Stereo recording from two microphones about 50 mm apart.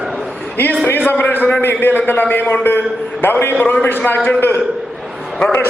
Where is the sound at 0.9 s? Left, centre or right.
Left.